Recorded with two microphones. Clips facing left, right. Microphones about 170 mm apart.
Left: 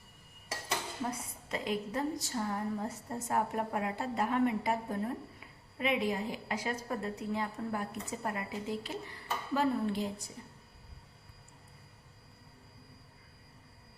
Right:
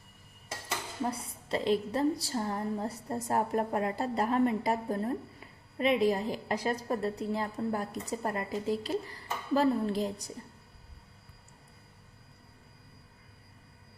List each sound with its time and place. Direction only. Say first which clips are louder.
1.1 s a woman's voice: right 5 dB; 30° right (ahead or behind)